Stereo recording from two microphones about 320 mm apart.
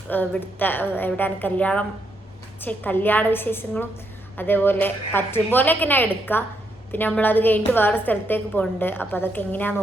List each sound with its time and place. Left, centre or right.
0.1 s a woman's voice: centre